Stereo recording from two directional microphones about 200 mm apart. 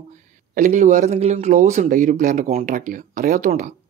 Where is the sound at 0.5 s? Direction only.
40° right (ahead or behind).